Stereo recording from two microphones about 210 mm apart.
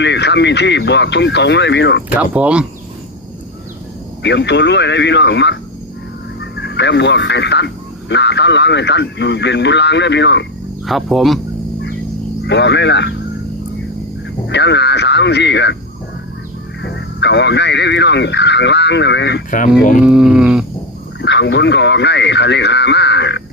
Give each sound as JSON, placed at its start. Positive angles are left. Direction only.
{"t": 0.0, "sound": "speech", "side_deg": 55}
{"t": 2.1, "sound": "speech", "side_deg": -5}
{"t": 4.2, "sound": "speech", "side_deg": 55}
{"t": 10.8, "sound": "a sound", "side_deg": 0}
{"t": 12.5, "sound": "speech", "side_deg": 55}
{"t": 14.4, "sound": "speech", "side_deg": 55}
{"t": 16.8, "sound": "speech", "side_deg": 55}
{"t": 19.5, "sound": "speech", "side_deg": 40}
{"t": 20.0, "sound": "a sound", "side_deg": -5}
{"t": 21.2, "sound": "speech", "side_deg": 55}